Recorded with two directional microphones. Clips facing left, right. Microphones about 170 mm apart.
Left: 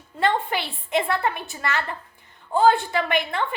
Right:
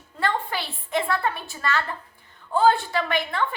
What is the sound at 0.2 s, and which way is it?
A woman's voice, 20° left (ahead or behind).